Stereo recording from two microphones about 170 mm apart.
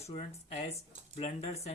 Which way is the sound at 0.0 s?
40° left (ahead or behind).